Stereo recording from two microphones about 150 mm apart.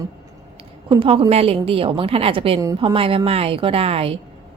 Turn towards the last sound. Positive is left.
turn(degrees=-40)  # may be behind; listen again after turning